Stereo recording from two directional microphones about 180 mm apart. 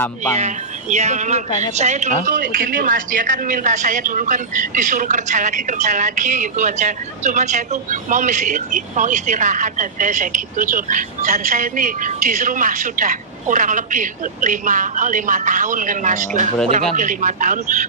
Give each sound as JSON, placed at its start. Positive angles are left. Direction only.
{"t": 0.3, "sound": "a woman's voice", "side_deg": -40}